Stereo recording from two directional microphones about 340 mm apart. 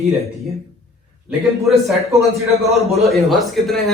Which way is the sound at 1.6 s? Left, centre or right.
Centre.